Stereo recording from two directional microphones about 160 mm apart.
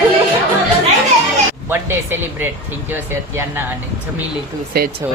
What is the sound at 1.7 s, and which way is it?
Speech, 15° right (ahead or behind).